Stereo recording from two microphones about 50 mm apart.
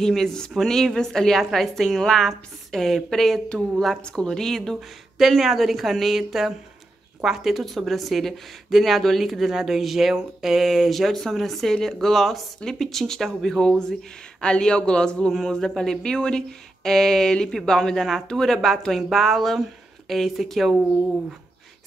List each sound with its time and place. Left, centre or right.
0.0 s a woman's voice: centre